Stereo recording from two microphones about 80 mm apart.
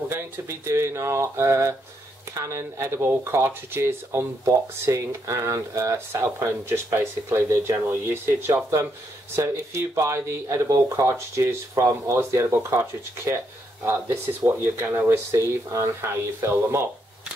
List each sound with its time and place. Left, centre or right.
0.1 s speech: right
13.8 s speech: right